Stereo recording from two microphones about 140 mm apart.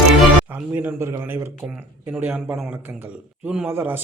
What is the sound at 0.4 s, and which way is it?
Speech, 15° right (ahead or behind).